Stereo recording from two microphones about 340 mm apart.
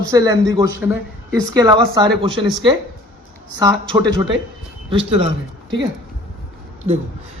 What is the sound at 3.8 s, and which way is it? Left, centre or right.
Speech, centre.